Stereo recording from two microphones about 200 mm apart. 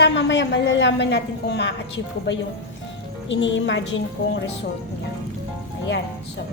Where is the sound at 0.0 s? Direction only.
65° left (ahead or behind).